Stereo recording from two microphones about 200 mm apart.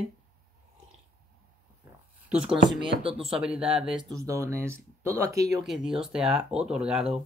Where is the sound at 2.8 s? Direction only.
30° right (ahead or behind).